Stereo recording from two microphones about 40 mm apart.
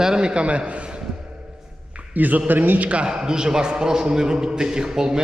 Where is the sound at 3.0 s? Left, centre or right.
Centre.